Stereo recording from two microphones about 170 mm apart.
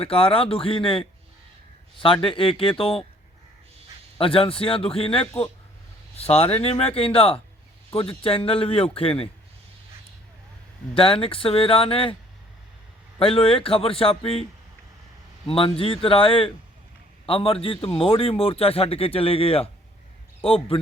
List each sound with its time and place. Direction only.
0.0 s a man's voice: 35° left (ahead or behind)
4.2 s a man's voice: 35° left (ahead or behind)
10.9 s a man's voice: 35° left (ahead or behind)
13.1 s a man's voice: 35° left (ahead or behind)
15.4 s a man's voice: 35° left (ahead or behind)